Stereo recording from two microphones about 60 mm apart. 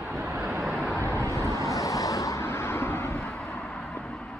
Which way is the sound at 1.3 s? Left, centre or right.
Left.